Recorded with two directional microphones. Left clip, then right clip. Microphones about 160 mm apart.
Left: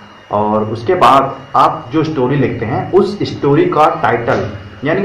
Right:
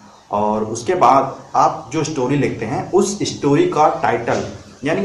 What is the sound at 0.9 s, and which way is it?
A man's voice, centre (ahead or behind).